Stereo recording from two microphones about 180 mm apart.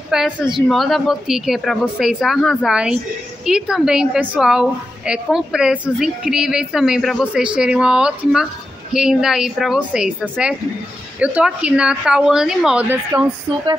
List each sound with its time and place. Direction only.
0.1 s a woman's voice: centre (ahead or behind)
11.1 s a woman's voice: 5° right (ahead or behind)
13.1 s speech: 20° right (ahead or behind)